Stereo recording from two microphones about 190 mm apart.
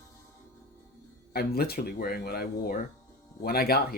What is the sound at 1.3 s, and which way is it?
Speech, 55° left (ahead or behind).